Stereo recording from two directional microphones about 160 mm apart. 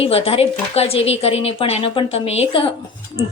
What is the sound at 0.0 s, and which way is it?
A woman's voice, 40° left (ahead or behind).